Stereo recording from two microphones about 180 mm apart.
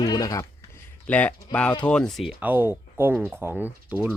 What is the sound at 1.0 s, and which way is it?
Speech, 10° left (ahead or behind).